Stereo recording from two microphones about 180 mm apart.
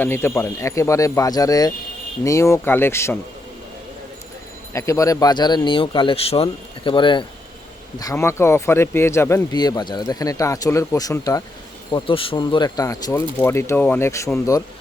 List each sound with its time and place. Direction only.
0.0 s speech: 10° left (ahead or behind)
4.7 s speech: 15° left (ahead or behind)